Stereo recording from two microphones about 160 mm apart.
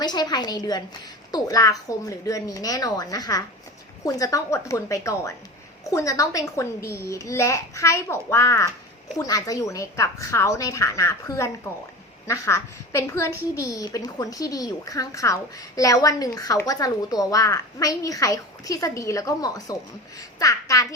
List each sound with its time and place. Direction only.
0.0 s a woman's voice: 25° left (ahead or behind)